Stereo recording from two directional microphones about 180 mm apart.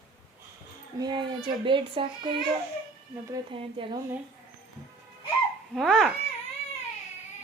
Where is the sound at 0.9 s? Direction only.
25° right (ahead or behind).